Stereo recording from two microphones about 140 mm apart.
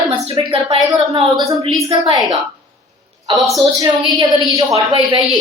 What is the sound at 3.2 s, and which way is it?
A woman's voice, 25° right (ahead or behind).